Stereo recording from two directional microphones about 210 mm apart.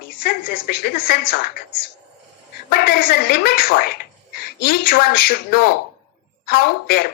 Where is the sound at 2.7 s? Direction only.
50° left (ahead or behind).